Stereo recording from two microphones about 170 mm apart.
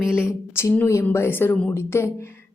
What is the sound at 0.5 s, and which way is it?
A woman's voice, 15° left (ahead or behind).